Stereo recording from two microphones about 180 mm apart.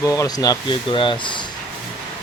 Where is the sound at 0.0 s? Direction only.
15° left (ahead or behind).